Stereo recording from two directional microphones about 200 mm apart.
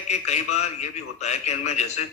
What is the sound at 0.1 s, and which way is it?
A man's voice, 35° left (ahead or behind).